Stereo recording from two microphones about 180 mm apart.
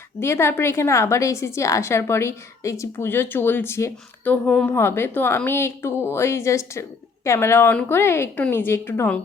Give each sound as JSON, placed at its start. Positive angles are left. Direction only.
{"t": 0.2, "sound": "a woman's voice", "side_deg": 15}